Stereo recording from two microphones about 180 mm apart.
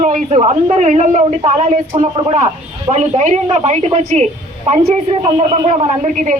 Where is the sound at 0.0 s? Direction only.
45° right (ahead or behind).